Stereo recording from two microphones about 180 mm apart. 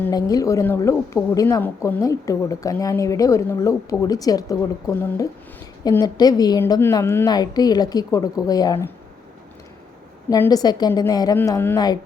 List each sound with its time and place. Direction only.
0.0 s a woman's voice: 20° left (ahead or behind)
10.2 s a woman's voice: 20° left (ahead or behind)